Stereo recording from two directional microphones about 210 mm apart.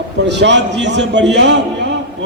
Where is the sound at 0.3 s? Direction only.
55° right (ahead or behind).